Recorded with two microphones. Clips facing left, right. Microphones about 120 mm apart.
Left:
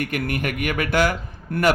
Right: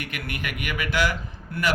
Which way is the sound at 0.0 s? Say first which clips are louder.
Left 8 dB; 45° left (ahead or behind).